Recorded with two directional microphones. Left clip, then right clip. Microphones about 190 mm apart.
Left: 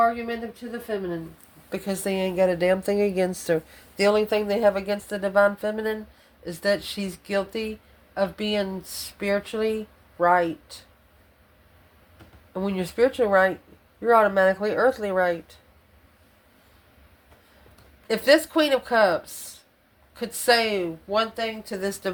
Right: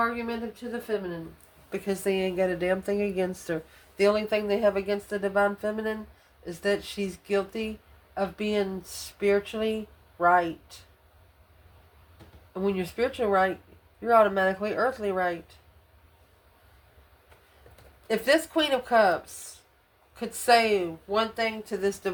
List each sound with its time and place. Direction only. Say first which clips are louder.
1.7 s a woman's voice: even; 40° left (ahead or behind)
12.5 s a woman's voice: left 4 dB; 35° left (ahead or behind)
18.1 s a woman's voice: left 5 dB; 30° left (ahead or behind)